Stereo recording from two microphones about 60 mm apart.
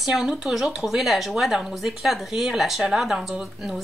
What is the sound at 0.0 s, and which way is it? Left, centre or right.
A woman's voice, centre.